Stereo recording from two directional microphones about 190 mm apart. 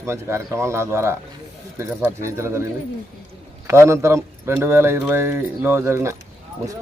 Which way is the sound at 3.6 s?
15° right (ahead or behind).